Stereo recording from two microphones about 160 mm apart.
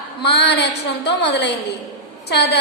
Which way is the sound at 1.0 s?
90° left.